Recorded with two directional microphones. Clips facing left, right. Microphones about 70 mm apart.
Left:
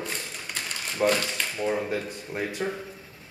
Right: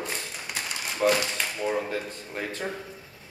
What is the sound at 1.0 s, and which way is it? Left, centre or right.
Speech, centre.